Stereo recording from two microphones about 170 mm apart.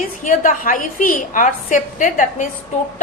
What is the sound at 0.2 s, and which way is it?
A woman's voice, 50° left (ahead or behind).